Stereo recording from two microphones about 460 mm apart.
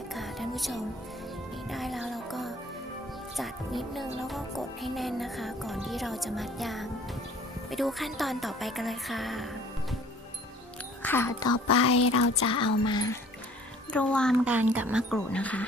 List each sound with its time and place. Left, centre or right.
0.1 s music: centre
1.7 s speech: centre
11.0 s speech: centre
11.5 s a sound: left
12.8 s speech: centre